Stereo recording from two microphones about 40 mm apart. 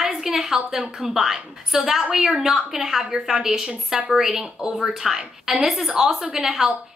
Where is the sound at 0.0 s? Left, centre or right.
Centre.